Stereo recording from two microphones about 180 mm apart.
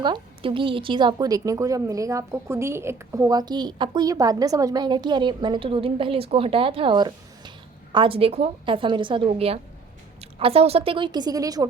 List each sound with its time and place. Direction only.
0.0 s a woman's voice: 25° right (ahead or behind)